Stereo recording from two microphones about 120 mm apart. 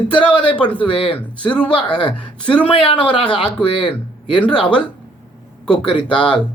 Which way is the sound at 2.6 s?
45° left (ahead or behind).